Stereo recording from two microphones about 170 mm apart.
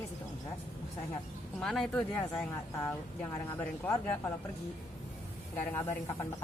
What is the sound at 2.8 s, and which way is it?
A woman's voice, 15° left (ahead or behind).